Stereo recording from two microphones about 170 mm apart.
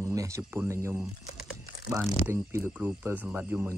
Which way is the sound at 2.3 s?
15° right (ahead or behind).